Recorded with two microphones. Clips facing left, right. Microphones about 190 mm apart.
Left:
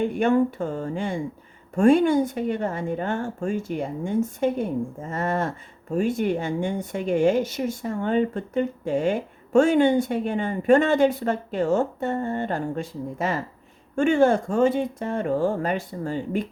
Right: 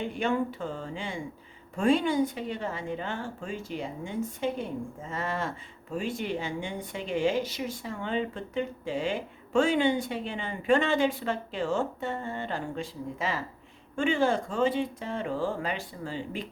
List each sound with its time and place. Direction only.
0.0 s a woman's voice: 50° left (ahead or behind)